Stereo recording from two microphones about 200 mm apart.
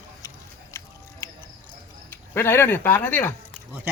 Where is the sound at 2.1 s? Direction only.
10° left (ahead or behind).